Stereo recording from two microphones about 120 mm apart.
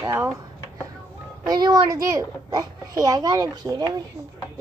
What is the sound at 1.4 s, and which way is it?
A child's voice, 35° right (ahead or behind).